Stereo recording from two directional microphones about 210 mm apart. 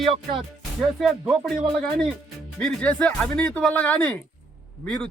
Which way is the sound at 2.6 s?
5° left (ahead or behind).